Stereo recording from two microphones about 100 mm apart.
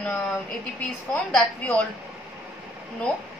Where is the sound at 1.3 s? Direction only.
15° left (ahead or behind).